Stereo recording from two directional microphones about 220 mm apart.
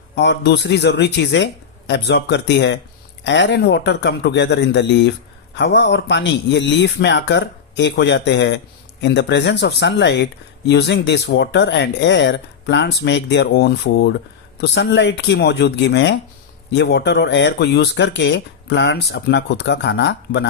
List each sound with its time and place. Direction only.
0.2 s speech: 50° left (ahead or behind)